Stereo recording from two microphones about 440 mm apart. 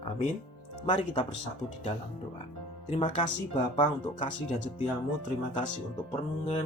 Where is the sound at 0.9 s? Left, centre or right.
Centre.